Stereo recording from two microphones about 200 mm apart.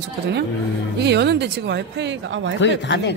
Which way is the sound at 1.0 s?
60° right (ahead or behind).